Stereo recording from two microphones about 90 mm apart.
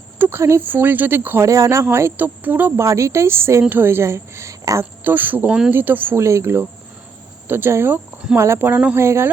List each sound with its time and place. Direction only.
0.2 s speech: 30° right (ahead or behind)
1.5 s speech: 35° right (ahead or behind)
4.8 s speech: 20° right (ahead or behind)